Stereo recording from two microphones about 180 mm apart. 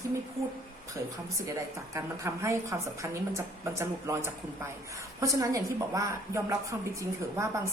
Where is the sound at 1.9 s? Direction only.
15° right (ahead or behind).